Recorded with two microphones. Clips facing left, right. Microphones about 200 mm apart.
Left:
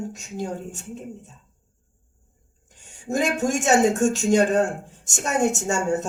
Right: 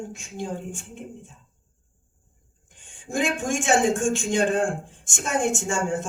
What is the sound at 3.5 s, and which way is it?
Speech, 40° left (ahead or behind).